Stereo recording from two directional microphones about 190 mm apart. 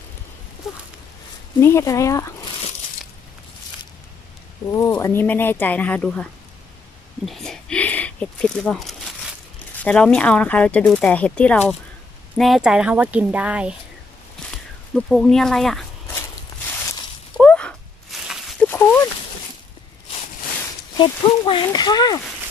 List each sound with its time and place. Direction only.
1.6 s speech: 15° left (ahead or behind)
4.7 s speech: 15° left (ahead or behind)
7.2 s speech: centre (ahead or behind)
17.4 s a sound: 5° left (ahead or behind)
20.9 s speech: 25° left (ahead or behind)